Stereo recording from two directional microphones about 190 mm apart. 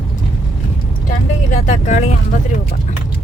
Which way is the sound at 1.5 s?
40° left (ahead or behind).